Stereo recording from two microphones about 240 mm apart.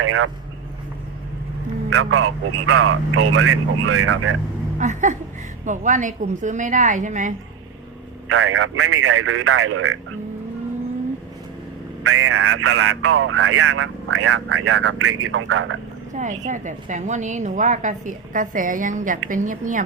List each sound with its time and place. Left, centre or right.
0.0 s speech: right
1.9 s speech: right
4.8 s a woman's voice: right
8.3 s speech: right
12.0 s speech: right
16.1 s a woman's voice: right